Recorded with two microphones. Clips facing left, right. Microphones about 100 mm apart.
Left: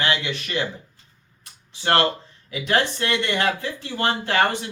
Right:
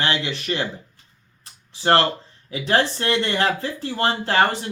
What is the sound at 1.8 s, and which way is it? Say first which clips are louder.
Speech: right 2 dB; 30° right (ahead or behind).